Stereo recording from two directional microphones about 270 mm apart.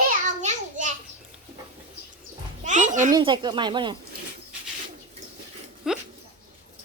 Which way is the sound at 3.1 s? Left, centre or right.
Centre.